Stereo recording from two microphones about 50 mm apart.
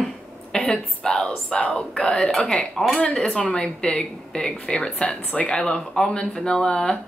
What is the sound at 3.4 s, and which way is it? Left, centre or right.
Speech, left.